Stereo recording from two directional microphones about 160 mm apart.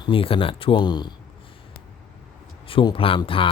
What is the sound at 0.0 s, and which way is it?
Speech, 35° left (ahead or behind).